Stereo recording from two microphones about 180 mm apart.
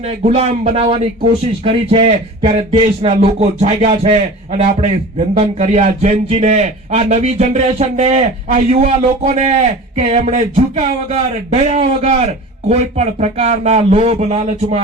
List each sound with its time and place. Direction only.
0.2 s a man's voice: 35° right (ahead or behind)